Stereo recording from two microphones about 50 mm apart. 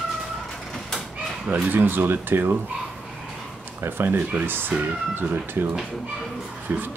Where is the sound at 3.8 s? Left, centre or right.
Right.